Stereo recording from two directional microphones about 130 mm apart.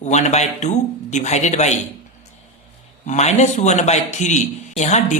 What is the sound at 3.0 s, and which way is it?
A man's voice, 65° left (ahead or behind).